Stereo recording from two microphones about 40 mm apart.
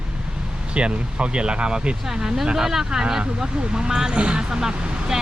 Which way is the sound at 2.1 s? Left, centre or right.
Centre.